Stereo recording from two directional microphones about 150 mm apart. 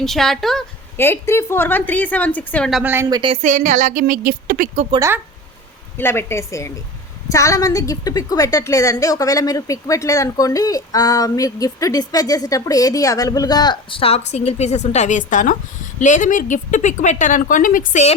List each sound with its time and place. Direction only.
0.0 s speech: centre (ahead or behind)
0.9 s a woman's voice: 15° left (ahead or behind)
2.8 s a woman's voice: 15° right (ahead or behind)
3.1 s speech: 30° right (ahead or behind)
3.4 s a woman's voice: 55° right (ahead or behind)
4.9 s speech: 25° right (ahead or behind)
6.0 s a woman's voice: 15° left (ahead or behind); by 18.1 s 55° left (ahead or behind)